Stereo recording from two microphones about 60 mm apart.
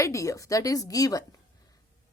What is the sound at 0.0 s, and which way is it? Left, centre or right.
Speech, left.